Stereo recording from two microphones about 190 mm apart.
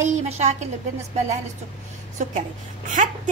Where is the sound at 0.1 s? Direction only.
35° right (ahead or behind).